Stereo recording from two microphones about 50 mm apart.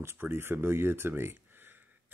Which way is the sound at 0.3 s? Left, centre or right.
Right.